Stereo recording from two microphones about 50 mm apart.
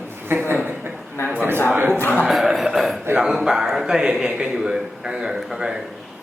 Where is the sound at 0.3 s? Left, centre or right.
Right.